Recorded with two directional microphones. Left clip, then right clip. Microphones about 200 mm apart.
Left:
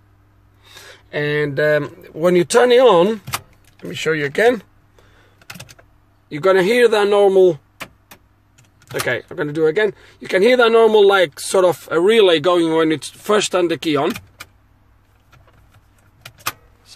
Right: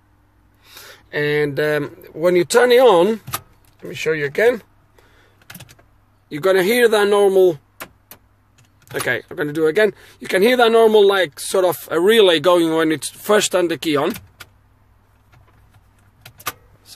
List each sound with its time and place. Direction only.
0.7 s speech: 10° left (ahead or behind)
3.8 s a sound: 20° left (ahead or behind)
6.2 s speech: 5° left (ahead or behind)
9.0 s speech: 5° left (ahead or behind)